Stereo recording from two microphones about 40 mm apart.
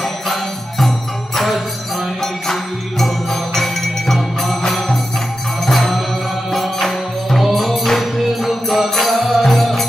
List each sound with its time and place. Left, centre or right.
0.0 s music: centre